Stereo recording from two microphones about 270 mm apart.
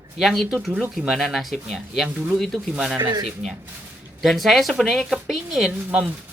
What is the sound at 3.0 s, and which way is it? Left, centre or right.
Speech, centre.